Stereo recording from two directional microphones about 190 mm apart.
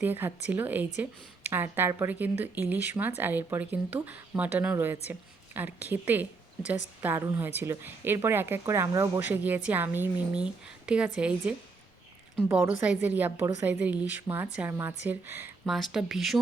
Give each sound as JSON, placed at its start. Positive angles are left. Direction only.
{"t": 0.0, "sound": "a woman's voice", "side_deg": -10}